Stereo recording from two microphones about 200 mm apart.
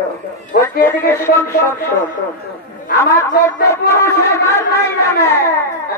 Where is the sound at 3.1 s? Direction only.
15° left (ahead or behind).